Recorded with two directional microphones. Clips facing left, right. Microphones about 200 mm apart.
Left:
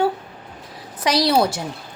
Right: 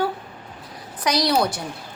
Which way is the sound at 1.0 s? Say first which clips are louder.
Left 3 dB; 30° left (ahead or behind).